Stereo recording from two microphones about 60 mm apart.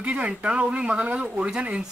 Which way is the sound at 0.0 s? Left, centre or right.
Centre.